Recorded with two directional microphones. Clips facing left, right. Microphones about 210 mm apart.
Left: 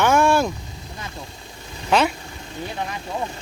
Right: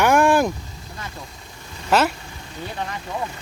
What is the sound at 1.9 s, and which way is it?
Speech, 5° right (ahead or behind).